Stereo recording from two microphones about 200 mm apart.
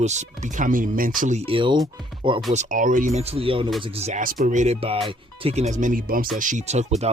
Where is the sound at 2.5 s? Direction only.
40° right (ahead or behind).